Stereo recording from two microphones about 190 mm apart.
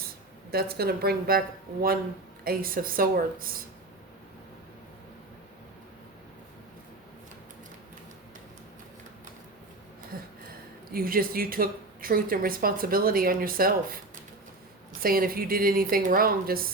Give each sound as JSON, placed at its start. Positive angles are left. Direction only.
{"t": 0.5, "sound": "a woman's voice", "side_deg": -55}
{"t": 2.4, "sound": "a woman's voice", "side_deg": -50}
{"t": 10.1, "sound": "a sound", "side_deg": -50}
{"t": 10.9, "sound": "a woman's voice", "side_deg": -50}
{"t": 15.0, "sound": "a woman's voice", "side_deg": -50}